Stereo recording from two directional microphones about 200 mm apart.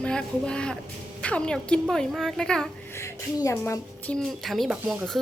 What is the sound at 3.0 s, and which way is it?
A woman's voice, 15° left (ahead or behind).